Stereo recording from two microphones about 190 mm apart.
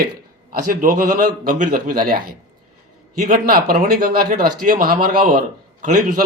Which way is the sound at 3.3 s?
45° right (ahead or behind).